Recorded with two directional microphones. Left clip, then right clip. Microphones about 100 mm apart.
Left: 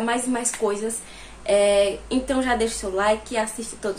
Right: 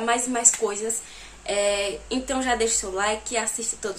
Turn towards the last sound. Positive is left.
turn(degrees=-20)  # may be behind; listen again after turning